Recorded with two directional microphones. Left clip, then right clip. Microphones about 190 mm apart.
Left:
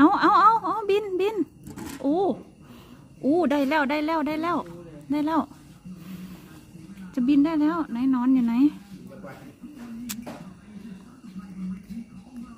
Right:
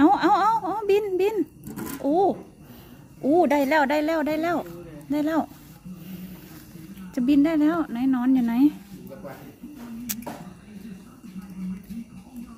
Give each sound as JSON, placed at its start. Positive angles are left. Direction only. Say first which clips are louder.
{"t": 0.0, "sound": "a sound", "louder": "left 2 dB", "side_deg": 35}
{"t": 3.2, "sound": "speech", "louder": "right 3 dB", "side_deg": 40}
{"t": 7.2, "sound": "speech", "louder": "right 1 dB", "side_deg": 30}